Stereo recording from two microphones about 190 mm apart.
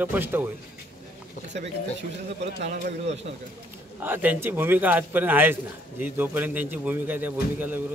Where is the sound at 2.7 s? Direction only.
35° right (ahead or behind).